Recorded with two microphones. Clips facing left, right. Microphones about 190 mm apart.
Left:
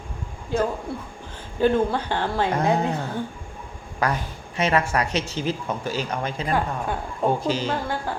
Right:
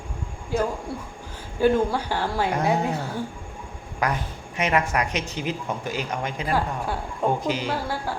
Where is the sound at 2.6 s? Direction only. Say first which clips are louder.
Left 1 dB; 15° left (ahead or behind).